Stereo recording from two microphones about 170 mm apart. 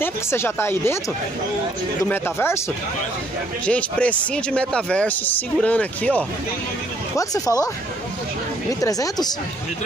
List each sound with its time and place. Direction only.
0.0 s speech: 15° left (ahead or behind)
2.0 s speech: 15° left (ahead or behind)
3.6 s speech: 5° left (ahead or behind)
7.2 s speech: 20° left (ahead or behind)
8.8 s speech: 20° left (ahead or behind)